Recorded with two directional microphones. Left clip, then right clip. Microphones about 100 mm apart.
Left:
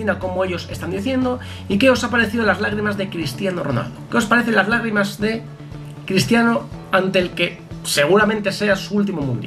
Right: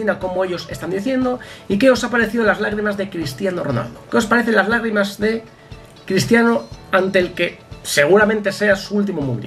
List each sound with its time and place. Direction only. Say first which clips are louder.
0.0 s speech: right 1 dB; 10° right (ahead or behind)